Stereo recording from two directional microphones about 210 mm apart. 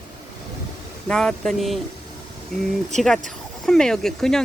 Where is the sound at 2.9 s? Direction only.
Centre (ahead or behind).